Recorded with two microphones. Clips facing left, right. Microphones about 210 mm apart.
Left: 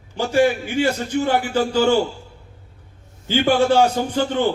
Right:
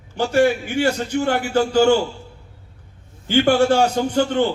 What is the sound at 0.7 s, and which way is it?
A man's voice, 55° right (ahead or behind).